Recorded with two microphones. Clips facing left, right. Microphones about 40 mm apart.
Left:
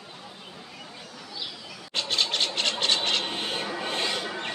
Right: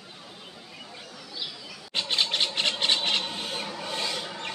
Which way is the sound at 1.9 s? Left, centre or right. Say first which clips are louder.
Even; centre.